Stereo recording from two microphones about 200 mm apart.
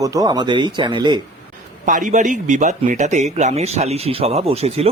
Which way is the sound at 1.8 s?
40° right (ahead or behind).